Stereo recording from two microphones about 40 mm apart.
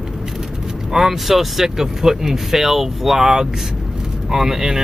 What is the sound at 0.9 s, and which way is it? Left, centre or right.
Speech, centre.